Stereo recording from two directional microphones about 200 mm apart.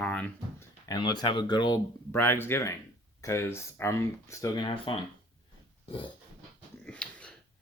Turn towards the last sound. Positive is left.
turn(degrees=5)  # may be behind; listen again after turning